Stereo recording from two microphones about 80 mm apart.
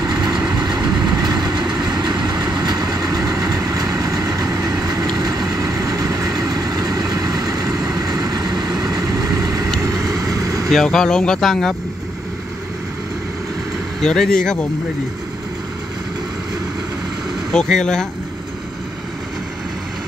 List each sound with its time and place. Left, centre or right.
0.0 s vehicle: right
0.6 s train: right
9.8 s vehicle: right
10.7 s speech: centre
14.0 s speech: centre
17.5 s speech: centre